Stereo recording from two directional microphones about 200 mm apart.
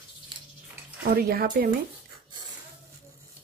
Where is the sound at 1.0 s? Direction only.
50° right (ahead or behind).